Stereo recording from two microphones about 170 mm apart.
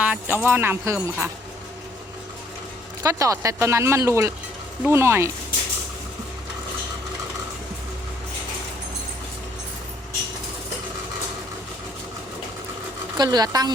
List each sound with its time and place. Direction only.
0.0 s speech: 10° right (ahead or behind)
3.0 s speech: 20° right (ahead or behind)
13.1 s speech: 25° right (ahead or behind)